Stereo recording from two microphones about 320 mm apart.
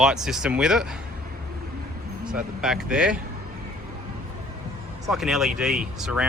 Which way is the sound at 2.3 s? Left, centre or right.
Centre.